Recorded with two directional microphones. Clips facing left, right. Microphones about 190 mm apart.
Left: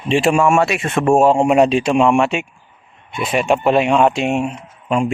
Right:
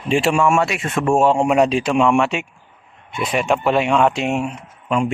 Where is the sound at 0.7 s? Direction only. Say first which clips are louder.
Left 3 dB; 70° left (ahead or behind).